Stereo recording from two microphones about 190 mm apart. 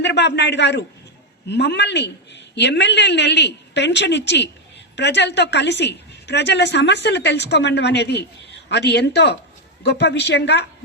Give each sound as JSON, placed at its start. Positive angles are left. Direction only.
{"t": 0.0, "sound": "a man's voice", "side_deg": 65}